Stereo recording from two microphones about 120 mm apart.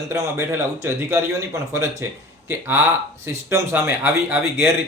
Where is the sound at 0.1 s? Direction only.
20° right (ahead or behind).